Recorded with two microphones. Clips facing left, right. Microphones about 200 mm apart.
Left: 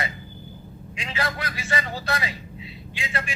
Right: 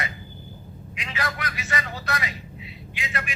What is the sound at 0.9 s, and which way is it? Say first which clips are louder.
A man's voice: left 2 dB; 30° left (ahead or behind).